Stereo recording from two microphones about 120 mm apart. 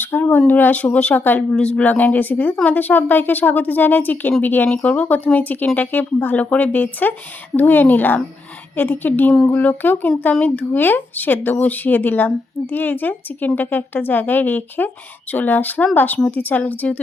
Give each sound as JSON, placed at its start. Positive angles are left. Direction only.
{"t": 0.0, "sound": "speech", "side_deg": 15}